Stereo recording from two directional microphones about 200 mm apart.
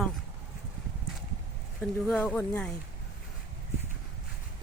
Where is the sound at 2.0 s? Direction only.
5° left (ahead or behind).